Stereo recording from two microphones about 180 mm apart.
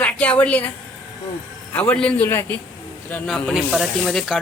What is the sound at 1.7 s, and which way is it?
Speech, 10° left (ahead or behind).